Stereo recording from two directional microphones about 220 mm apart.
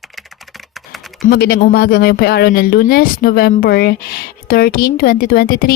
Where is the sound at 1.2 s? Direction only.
45° left (ahead or behind).